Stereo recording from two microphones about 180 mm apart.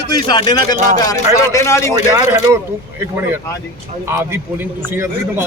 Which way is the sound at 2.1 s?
15° right (ahead or behind).